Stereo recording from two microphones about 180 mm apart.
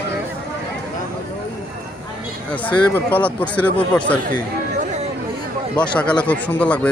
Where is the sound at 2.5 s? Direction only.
10° left (ahead or behind).